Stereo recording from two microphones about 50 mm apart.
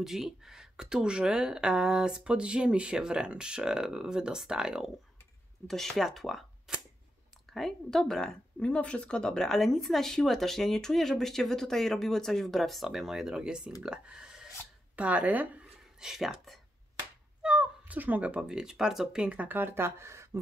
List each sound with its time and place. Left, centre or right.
0.0 s speech: centre
5.7 s speech: centre
6.7 s cap gun: centre
7.5 s speech: centre
8.5 s speech: left; by 14.5 s centre
15.0 s speech: right
16.0 s speech: centre
17.4 s cat: right
18.5 s speech: centre
19.2 s speech: right